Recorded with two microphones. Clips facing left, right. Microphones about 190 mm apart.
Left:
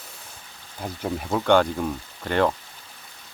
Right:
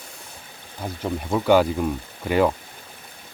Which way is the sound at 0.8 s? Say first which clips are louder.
Right 1 dB; 5° right (ahead or behind).